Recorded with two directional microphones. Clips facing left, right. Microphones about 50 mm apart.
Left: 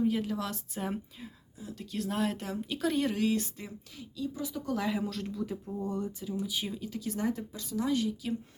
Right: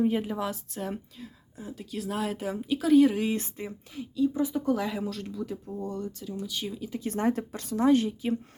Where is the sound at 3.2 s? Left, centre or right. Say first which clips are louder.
Right 1 dB; right.